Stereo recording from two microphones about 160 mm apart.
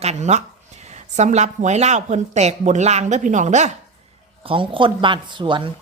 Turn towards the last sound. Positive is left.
turn(degrees=-30)  # may be behind; listen again after turning